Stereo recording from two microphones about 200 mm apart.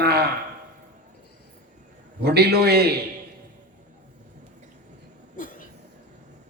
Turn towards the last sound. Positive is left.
turn(degrees=45)  # may be behind; listen again after turning